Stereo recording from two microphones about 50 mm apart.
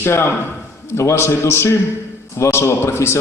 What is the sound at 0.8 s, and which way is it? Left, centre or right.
A man's voice, left.